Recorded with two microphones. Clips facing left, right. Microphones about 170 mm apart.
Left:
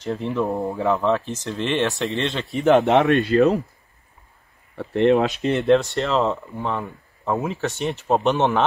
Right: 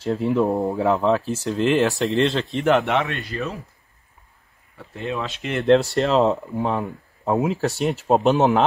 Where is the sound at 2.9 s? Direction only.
45° left (ahead or behind).